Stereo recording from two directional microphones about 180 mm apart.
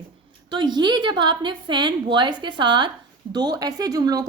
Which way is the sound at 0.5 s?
25° right (ahead or behind).